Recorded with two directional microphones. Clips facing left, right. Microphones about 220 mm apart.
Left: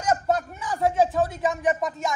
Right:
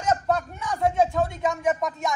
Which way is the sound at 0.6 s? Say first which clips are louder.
Even; centre (ahead or behind).